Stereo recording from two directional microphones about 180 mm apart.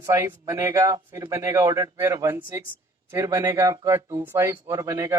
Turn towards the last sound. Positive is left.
turn(degrees=-15)  # may be behind; listen again after turning